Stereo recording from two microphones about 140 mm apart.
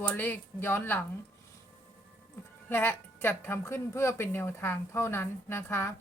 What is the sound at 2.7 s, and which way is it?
A woman's voice, 15° left (ahead or behind).